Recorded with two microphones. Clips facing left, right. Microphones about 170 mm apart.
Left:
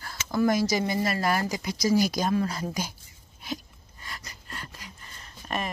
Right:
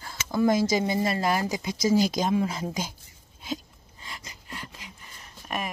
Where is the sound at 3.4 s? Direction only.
20° right (ahead or behind).